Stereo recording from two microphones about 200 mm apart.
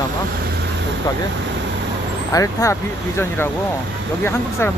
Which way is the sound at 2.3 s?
15° left (ahead or behind).